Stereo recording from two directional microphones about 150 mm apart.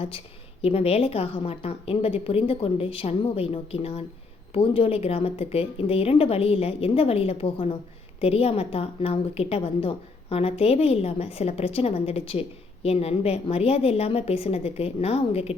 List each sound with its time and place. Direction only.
0.6 s a woman's voice: 40° left (ahead or behind)